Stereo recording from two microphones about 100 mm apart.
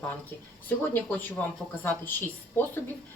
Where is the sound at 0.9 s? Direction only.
20° left (ahead or behind).